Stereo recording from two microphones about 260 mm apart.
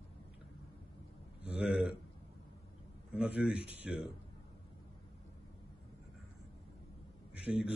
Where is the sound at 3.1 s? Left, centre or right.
Centre.